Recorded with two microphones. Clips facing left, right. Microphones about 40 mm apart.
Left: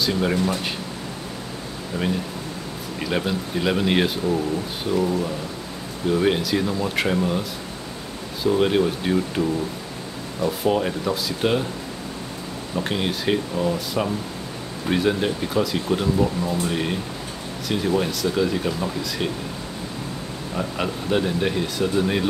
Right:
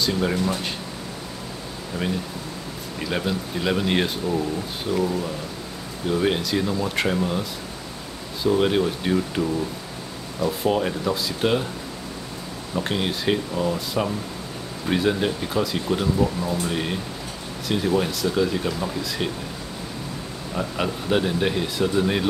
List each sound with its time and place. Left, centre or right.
0.0 s speech: centre
3.0 s speech: centre
4.9 s speech: left
6.0 s speech: centre
8.5 s speech: centre
12.7 s speech: centre
20.5 s speech: centre